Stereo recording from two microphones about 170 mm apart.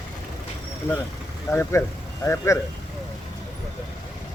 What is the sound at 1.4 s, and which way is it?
Speech, 15° left (ahead or behind).